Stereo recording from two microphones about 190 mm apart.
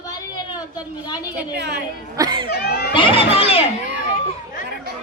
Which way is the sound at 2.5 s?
55° left (ahead or behind).